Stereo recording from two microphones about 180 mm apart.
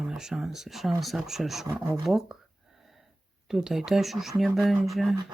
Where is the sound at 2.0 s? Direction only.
Centre (ahead or behind).